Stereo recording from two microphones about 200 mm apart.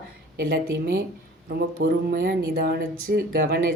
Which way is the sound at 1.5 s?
50° right (ahead or behind).